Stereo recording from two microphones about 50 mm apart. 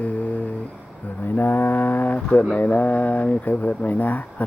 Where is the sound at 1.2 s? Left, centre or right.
Left.